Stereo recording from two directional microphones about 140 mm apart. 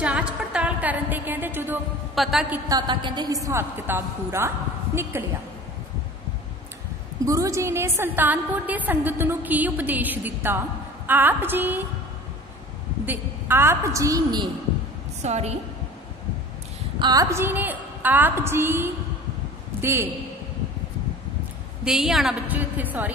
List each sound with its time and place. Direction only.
0.0 s music: 5° right (ahead or behind)
2.2 s a woman's voice: centre (ahead or behind)
2.7 s a woman's voice: 35° right (ahead or behind)
7.2 s a woman's voice: 25° right (ahead or behind)
13.0 s a woman's voice: 15° right (ahead or behind)
15.2 s a woman's voice: 50° right (ahead or behind)
17.0 s a woman's voice: 25° right (ahead or behind)
21.8 s a woman's voice: 5° right (ahead or behind)